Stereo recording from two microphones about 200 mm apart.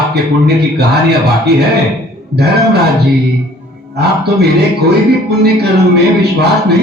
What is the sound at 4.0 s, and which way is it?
A man's voice, 55° right (ahead or behind).